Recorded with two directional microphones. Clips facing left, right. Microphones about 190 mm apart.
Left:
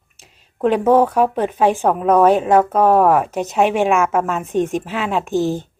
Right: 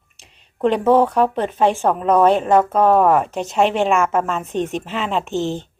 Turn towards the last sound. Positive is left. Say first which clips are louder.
# left 3 dB
turn(degrees=15)  # may be behind; listen again after turning